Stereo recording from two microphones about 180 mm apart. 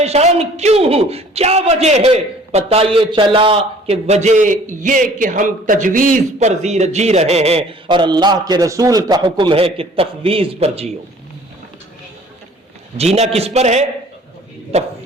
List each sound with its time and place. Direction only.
0.0 s a man's voice: 35° right (ahead or behind)
13.0 s a man's voice: 35° right (ahead or behind)